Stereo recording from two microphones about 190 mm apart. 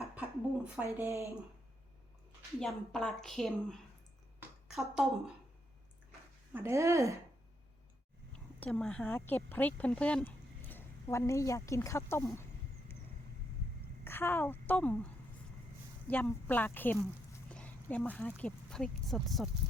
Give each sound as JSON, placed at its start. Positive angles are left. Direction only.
{"t": 0.2, "sound": "a sound", "side_deg": -5}
{"t": 0.9, "sound": "speech", "side_deg": -15}
{"t": 2.6, "sound": "a woman's voice", "side_deg": 0}
{"t": 6.5, "sound": "speech", "side_deg": -15}
{"t": 8.5, "sound": "speech", "side_deg": 5}
{"t": 14.0, "sound": "a woman's voice", "side_deg": 10}
{"t": 16.0, "sound": "a woman's voice", "side_deg": 10}